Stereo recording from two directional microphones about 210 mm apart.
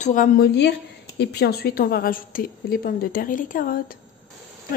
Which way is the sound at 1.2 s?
50° left (ahead or behind).